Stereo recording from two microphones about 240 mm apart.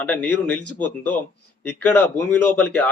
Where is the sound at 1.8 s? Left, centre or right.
Centre.